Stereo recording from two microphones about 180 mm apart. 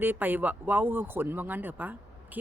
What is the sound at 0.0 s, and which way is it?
Speech, 10° right (ahead or behind).